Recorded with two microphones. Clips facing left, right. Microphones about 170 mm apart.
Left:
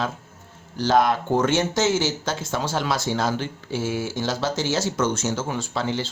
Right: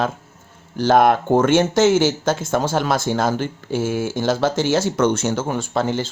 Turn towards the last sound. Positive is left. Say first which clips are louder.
# right 5 dB
turn(degrees=-50)  # may be behind; listen again after turning